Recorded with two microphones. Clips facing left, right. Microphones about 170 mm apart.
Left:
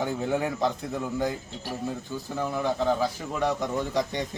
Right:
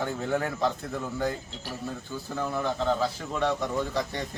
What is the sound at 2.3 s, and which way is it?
A man's voice, 10° left (ahead or behind).